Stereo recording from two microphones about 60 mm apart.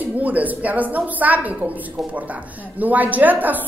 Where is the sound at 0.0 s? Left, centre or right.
Right.